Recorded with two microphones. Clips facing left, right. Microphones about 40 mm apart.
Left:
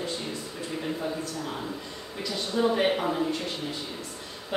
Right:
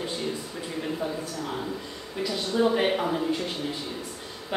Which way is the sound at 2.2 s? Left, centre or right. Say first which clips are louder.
Right 2 dB; centre.